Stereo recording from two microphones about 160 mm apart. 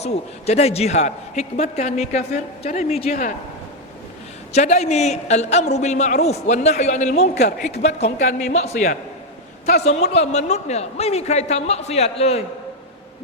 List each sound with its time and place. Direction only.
0.0 s a man's voice: 40° left (ahead or behind)
4.5 s a man's voice: 45° left (ahead or behind)